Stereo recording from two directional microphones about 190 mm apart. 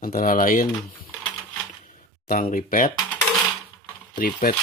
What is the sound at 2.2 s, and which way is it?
Speech, 50° left (ahead or behind).